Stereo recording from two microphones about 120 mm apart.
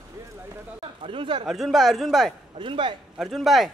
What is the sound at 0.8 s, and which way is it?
Speech, 45° right (ahead or behind).